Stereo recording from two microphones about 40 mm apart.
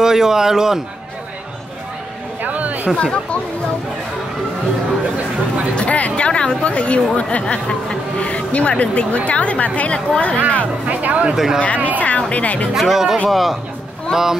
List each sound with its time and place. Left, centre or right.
0.0 s speech: centre
2.4 s a sound: right
3.0 s speech: left
5.8 s speech: left
10.9 s speech: right
11.3 s speech: centre
11.6 s speech: left
12.7 s speech: centre
14.1 s speech: centre